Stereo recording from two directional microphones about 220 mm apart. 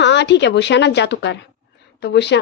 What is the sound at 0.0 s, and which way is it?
A woman's voice, 50° left (ahead or behind).